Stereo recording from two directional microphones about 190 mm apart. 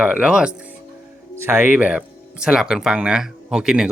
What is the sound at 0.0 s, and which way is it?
Speech, 5° right (ahead or behind).